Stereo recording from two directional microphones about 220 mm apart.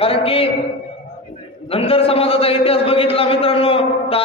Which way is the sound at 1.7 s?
25° left (ahead or behind).